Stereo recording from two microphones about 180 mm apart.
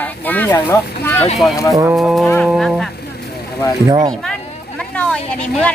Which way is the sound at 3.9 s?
20° right (ahead or behind).